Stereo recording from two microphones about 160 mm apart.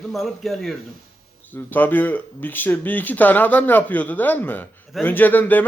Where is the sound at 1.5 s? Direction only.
10° left (ahead or behind).